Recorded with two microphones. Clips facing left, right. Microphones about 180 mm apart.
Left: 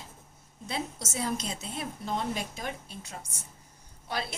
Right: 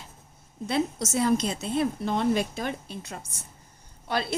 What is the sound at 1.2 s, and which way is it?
A woman's voice, 65° right (ahead or behind).